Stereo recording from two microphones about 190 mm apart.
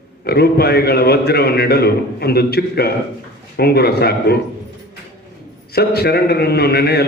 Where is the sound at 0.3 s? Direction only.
55° left (ahead or behind).